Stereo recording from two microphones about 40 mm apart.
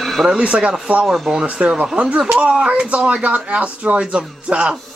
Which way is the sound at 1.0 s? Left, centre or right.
Centre.